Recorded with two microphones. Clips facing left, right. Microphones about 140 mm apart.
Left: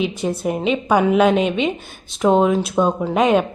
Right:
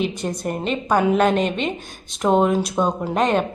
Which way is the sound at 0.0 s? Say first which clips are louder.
Left 3 dB; centre (ahead or behind).